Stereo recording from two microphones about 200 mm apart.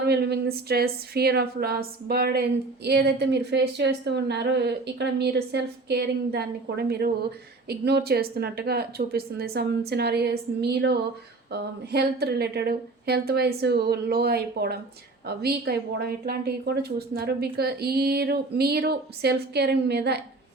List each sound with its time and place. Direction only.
0.0 s a woman's voice: 55° right (ahead or behind)